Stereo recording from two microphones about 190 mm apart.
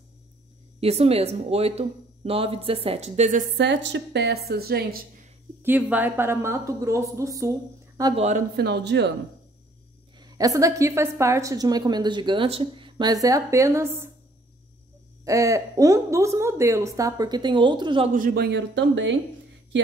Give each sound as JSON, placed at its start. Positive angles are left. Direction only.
{"t": 0.7, "sound": "speech", "side_deg": -30}
{"t": 3.5, "sound": "a woman's voice", "side_deg": -65}
{"t": 5.6, "sound": "a woman's voice", "side_deg": -10}
{"t": 8.5, "sound": "a woman's voice", "side_deg": -60}
{"t": 10.1, "sound": "a woman's voice", "side_deg": -20}
{"t": 15.2, "sound": "a woman's voice", "side_deg": -15}
{"t": 18.1, "sound": "a woman's voice", "side_deg": -50}